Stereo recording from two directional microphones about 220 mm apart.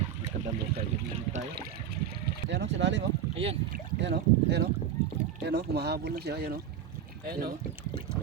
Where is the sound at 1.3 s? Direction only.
45° right (ahead or behind).